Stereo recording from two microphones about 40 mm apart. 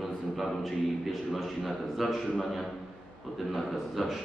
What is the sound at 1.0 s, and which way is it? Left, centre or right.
A man's voice, centre.